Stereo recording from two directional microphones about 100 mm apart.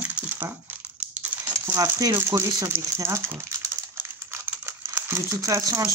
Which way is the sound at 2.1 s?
25° right (ahead or behind).